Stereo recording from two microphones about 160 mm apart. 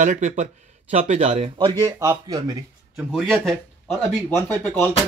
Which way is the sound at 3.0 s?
5° right (ahead or behind).